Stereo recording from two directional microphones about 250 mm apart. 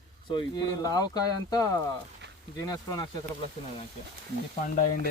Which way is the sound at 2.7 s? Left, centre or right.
Centre.